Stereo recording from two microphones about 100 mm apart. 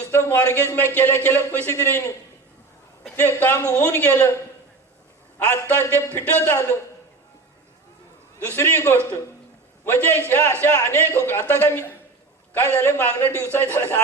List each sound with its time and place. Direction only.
0.0 s speech: 20° left (ahead or behind)
3.2 s speech: 20° left (ahead or behind)
5.5 s speech: 20° left (ahead or behind)
8.4 s speech: 20° left (ahead or behind)